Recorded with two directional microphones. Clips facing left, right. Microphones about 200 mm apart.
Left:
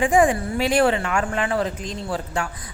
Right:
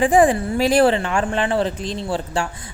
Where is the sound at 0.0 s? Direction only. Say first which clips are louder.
Right 3 dB; 35° right (ahead or behind).